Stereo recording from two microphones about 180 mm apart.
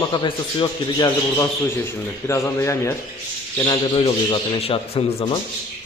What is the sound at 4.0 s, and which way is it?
A man's voice, 30° left (ahead or behind).